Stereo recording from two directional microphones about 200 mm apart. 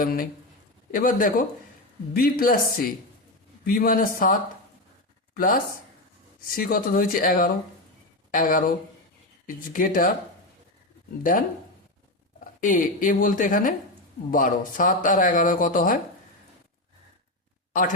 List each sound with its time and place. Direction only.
0.0 s speech: 45° left (ahead or behind)
11.2 s speech: 45° left (ahead or behind)
12.5 s speech: 40° left (ahead or behind)